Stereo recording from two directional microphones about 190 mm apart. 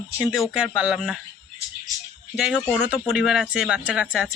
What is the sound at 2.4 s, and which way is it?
Speech, 5° right (ahead or behind).